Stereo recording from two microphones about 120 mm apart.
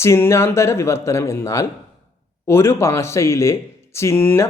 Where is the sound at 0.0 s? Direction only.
20° left (ahead or behind).